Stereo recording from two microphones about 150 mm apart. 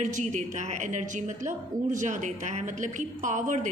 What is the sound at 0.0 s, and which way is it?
A woman's voice, 55° right (ahead or behind).